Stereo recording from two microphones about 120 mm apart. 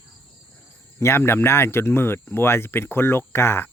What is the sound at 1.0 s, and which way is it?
Speech, 20° left (ahead or behind).